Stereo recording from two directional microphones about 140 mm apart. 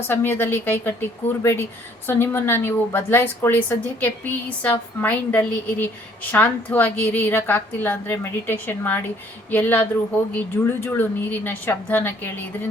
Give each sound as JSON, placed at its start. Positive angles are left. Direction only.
{"t": 0.1, "sound": "a woman's voice", "side_deg": 15}